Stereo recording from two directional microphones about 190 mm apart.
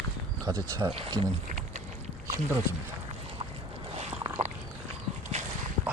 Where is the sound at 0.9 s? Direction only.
25° right (ahead or behind).